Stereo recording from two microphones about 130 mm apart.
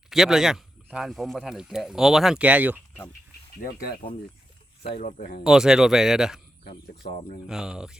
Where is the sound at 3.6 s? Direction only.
90° left.